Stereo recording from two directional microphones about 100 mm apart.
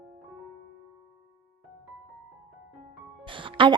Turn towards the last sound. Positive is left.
turn(degrees=-55)  # may be behind; listen again after turning